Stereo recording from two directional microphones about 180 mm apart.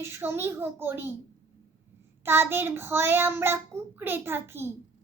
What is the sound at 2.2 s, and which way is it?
A child's voice, 15° right (ahead or behind).